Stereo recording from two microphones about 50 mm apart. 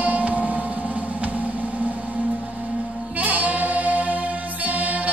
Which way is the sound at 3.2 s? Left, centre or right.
Right.